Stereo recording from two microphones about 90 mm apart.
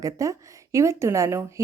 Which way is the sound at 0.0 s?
35° right (ahead or behind).